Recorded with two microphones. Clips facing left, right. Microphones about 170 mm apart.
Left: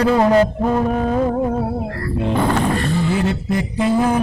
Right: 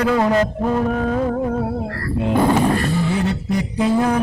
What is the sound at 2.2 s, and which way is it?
Speech, 10° right (ahead or behind).